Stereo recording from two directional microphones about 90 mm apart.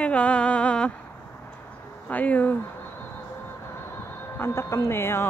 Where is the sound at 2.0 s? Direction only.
15° left (ahead or behind).